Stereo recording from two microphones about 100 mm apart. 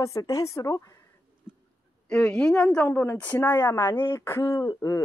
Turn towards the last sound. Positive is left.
turn(degrees=35)  # may be behind; listen again after turning